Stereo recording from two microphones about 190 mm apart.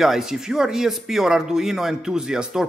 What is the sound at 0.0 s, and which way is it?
Speech, centre (ahead or behind).